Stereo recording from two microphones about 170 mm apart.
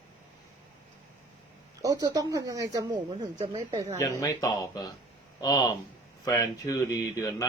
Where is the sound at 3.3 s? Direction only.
35° right (ahead or behind).